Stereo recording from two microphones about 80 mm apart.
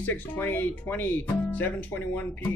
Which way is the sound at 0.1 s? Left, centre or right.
Left.